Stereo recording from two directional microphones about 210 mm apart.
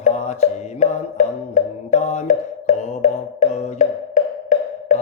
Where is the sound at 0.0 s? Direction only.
35° left (ahead or behind).